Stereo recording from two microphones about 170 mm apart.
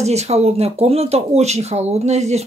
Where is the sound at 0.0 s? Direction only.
40° right (ahead or behind).